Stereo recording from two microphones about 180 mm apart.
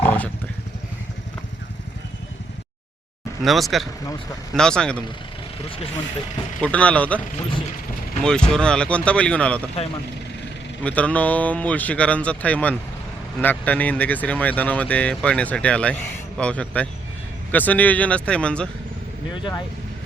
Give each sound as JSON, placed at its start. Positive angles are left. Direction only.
{"t": 0.0, "sound": "wild animals", "side_deg": 10}
{"t": 3.4, "sound": "speech", "side_deg": 0}
{"t": 6.6, "sound": "speech", "side_deg": 5}
{"t": 8.2, "sound": "speech", "side_deg": 5}
{"t": 10.8, "sound": "speech", "side_deg": 5}
{"t": 19.3, "sound": "speech", "side_deg": 25}